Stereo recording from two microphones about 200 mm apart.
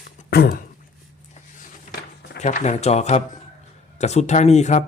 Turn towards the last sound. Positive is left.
turn(degrees=35)  # may be behind; listen again after turning